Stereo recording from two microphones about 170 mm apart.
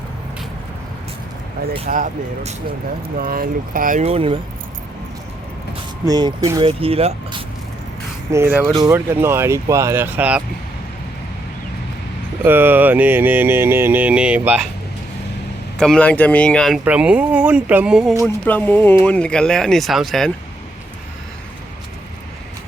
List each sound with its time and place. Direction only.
1.9 s speech: 45° right (ahead or behind)
3.2 s speech: 60° right (ahead or behind)
4.0 s speech: 35° right (ahead or behind)
6.1 s speech: 25° right (ahead or behind)
6.7 s speech: 35° right (ahead or behind)
8.3 s music: 15° right (ahead or behind)
12.5 s music: 10° right (ahead or behind)
15.8 s speech: 5° left (ahead or behind)
16.8 s music: 10° right (ahead or behind)
18.4 s speech: 10° left (ahead or behind)